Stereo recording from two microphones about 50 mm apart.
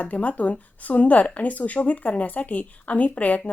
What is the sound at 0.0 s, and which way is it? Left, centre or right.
Speech, left.